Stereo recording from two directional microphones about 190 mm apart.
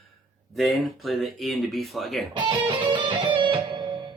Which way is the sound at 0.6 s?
Centre (ahead or behind).